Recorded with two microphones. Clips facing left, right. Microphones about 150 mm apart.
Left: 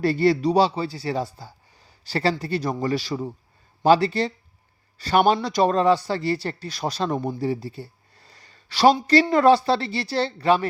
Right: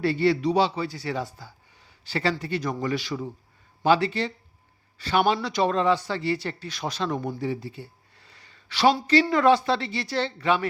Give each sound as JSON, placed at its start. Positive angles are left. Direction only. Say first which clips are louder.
{"t": 0.0, "sound": "speech", "louder": "left 3 dB", "side_deg": 40}